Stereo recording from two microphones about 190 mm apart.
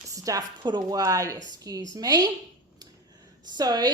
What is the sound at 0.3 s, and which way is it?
A woman's voice, 20° right (ahead or behind).